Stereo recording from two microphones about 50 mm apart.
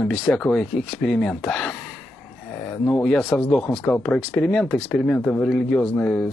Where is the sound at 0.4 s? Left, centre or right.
Centre.